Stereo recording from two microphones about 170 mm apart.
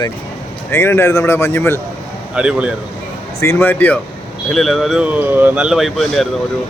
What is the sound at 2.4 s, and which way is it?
Speech, 5° right (ahead or behind).